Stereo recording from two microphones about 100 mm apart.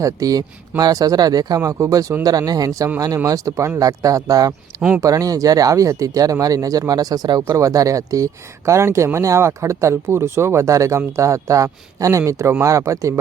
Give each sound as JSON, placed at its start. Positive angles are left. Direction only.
{"t": 0.0, "sound": "speech", "side_deg": -35}